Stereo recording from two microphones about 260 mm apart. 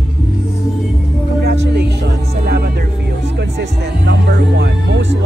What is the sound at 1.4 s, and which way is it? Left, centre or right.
Music, right.